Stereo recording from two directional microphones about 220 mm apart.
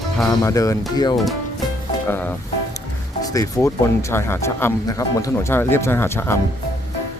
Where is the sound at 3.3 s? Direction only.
15° left (ahead or behind).